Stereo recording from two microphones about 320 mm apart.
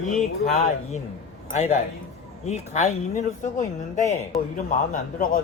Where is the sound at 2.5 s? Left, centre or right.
Left.